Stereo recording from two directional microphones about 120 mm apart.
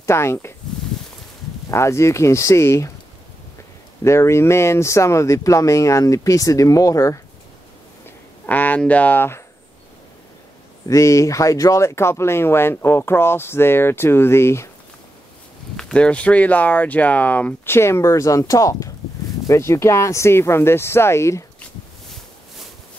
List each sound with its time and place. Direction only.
0.0 s speech: 20° left (ahead or behind)
1.7 s speech: 25° left (ahead or behind)
4.0 s speech: 20° left (ahead or behind)
8.5 s speech: 15° left (ahead or behind)
10.9 s speech: 25° left (ahead or behind)
15.7 s speech: 5° left (ahead or behind); by 21.5 s 25° left (ahead or behind)